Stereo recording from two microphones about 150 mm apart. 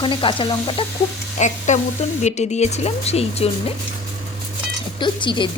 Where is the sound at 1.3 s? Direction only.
50° left (ahead or behind).